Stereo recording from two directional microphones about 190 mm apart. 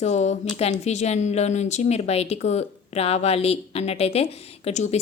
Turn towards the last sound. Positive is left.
turn(degrees=35)  # may be behind; listen again after turning